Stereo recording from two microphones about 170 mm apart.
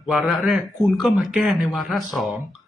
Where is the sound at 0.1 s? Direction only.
Centre (ahead or behind).